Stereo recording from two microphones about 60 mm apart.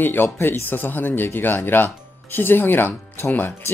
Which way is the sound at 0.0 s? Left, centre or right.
Left.